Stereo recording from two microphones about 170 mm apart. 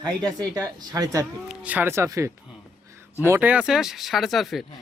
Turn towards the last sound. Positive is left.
turn(degrees=0)  # may be behind; listen again after turning